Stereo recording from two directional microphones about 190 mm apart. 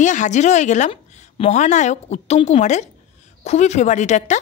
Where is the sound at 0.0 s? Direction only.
40° left (ahead or behind).